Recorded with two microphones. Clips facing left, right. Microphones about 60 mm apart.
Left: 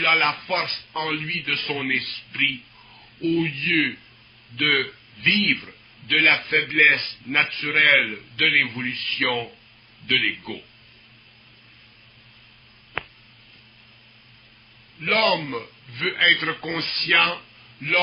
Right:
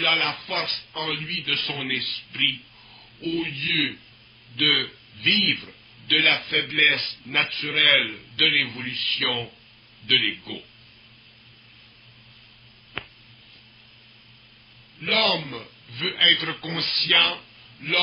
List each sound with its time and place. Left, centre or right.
0.0 s speech: left
15.0 s speech: left